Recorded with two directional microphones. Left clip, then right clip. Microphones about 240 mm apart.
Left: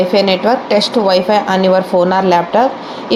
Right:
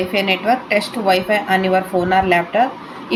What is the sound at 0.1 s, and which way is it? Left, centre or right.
A woman's voice, left.